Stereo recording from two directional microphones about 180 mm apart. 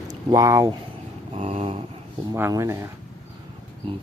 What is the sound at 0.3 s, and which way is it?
Speech, 20° right (ahead or behind).